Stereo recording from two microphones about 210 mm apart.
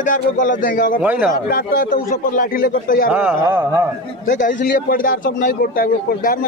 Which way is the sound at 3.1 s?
5° right (ahead or behind).